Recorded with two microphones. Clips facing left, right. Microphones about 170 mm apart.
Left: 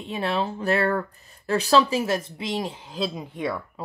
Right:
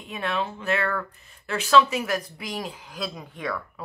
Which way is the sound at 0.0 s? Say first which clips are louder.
Left 3 dB; 30° left (ahead or behind).